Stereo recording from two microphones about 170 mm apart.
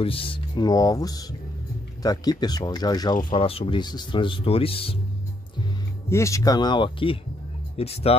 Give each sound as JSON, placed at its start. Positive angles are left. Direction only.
{"t": 0.0, "sound": "speech", "side_deg": 35}
{"t": 6.0, "sound": "speech", "side_deg": 15}